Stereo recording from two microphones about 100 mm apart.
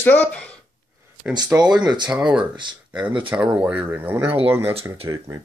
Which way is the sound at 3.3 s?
15° right (ahead or behind).